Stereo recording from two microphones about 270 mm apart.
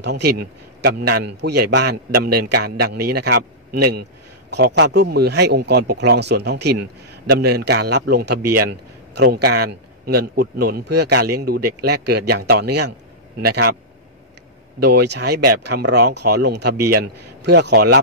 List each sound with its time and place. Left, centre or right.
0.0 s speech: right
4.5 s speech: right
14.8 s speech: right